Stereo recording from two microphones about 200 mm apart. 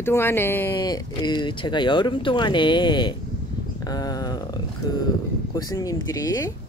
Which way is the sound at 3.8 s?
20° left (ahead or behind).